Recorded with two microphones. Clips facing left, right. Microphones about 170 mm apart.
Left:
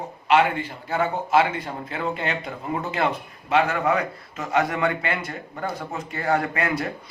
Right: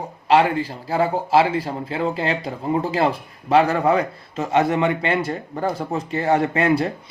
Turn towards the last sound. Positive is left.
turn(degrees=-30)  # may be behind; listen again after turning